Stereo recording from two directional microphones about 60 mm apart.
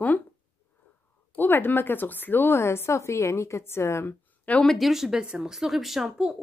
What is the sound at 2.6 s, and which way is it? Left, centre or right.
A woman's voice, left.